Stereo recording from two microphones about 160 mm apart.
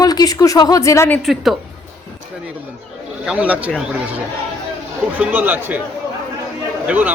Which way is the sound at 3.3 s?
10° right (ahead or behind).